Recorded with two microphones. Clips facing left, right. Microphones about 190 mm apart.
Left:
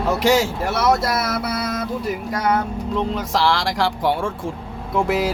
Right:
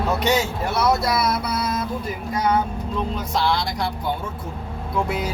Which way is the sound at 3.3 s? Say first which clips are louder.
Left 2 dB; 90° left.